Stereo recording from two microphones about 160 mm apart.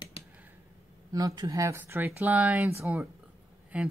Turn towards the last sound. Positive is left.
turn(degrees=-10)  # may be behind; listen again after turning